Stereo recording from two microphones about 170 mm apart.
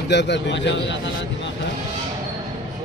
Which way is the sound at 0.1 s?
90° left.